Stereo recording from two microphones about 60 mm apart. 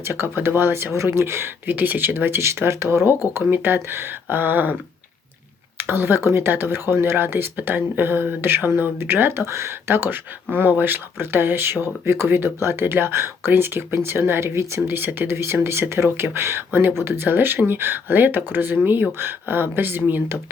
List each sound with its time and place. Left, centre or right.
0.1 s speech: right
1.7 s speech: right
9.5 s speech: right
9.9 s speech: right